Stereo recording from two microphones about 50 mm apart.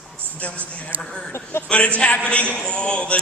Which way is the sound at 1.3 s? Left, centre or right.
Left.